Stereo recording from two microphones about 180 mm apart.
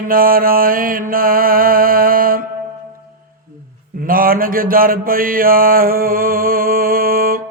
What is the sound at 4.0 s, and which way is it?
Mantra, 50° right (ahead or behind).